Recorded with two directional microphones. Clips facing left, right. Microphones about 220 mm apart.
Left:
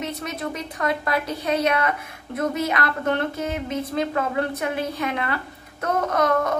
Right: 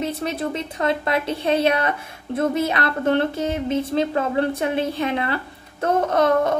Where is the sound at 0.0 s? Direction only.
30° right (ahead or behind).